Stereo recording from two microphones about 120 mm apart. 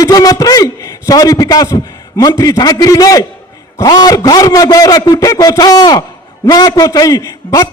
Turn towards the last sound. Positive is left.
turn(degrees=25)  # may be behind; listen again after turning